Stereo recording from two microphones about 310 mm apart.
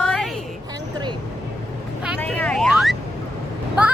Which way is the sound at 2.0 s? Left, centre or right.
Centre.